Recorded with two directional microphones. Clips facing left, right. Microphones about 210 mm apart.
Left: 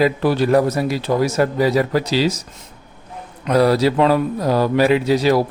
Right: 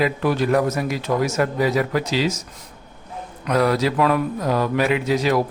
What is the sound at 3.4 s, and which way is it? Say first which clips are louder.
Speech: left 4 dB; 30° left (ahead or behind).